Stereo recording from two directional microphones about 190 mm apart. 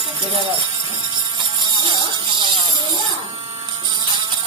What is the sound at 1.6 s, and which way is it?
Insect, 25° right (ahead or behind).